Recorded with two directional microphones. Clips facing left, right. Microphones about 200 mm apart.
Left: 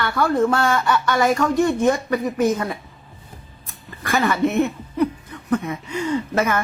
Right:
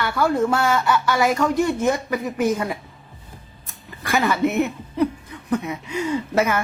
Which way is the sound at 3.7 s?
Centre (ahead or behind).